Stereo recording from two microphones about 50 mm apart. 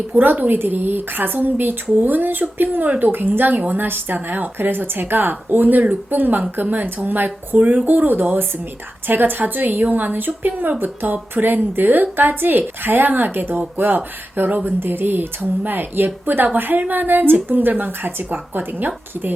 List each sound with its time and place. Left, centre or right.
0.1 s speech: right